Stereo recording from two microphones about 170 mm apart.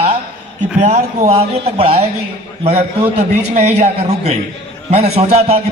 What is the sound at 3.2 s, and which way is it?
A man's voice, 40° right (ahead or behind).